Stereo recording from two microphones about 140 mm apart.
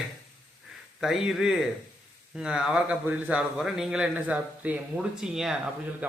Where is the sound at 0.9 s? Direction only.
Centre (ahead or behind).